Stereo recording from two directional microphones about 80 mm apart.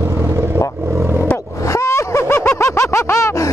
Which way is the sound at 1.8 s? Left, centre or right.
Left.